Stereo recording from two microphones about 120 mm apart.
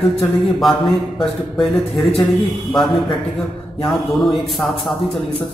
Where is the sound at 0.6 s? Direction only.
Centre (ahead or behind).